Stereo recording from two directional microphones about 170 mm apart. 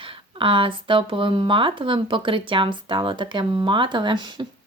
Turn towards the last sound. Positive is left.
turn(degrees=-25)  # may be behind; listen again after turning